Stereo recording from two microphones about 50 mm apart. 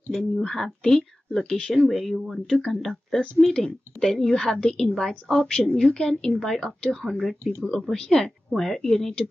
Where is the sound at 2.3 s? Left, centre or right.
Centre.